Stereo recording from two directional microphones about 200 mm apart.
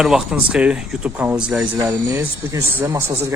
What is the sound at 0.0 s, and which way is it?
Speech, centre (ahead or behind).